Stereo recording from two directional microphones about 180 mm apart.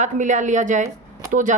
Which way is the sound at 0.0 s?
45° right (ahead or behind).